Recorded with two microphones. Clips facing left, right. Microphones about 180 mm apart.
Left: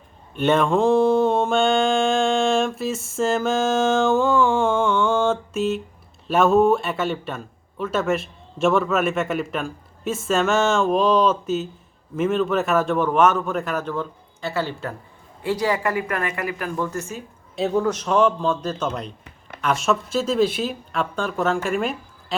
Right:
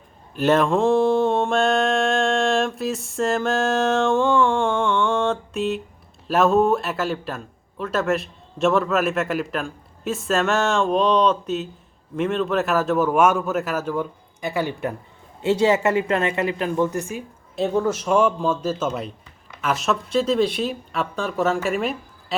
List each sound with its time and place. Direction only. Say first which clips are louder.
0.3 s a woman's voice: even; centre (ahead or behind)
17.5 s a man's voice: even; centre (ahead or behind)